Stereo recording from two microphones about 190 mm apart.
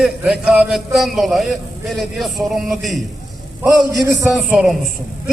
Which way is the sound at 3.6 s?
15° right (ahead or behind).